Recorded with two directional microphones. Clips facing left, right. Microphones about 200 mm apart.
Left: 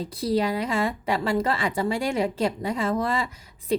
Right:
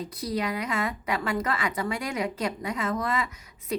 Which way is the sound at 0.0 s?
30° left (ahead or behind).